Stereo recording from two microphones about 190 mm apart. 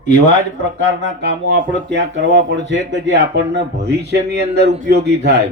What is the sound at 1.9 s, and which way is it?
Speech, 70° right (ahead or behind).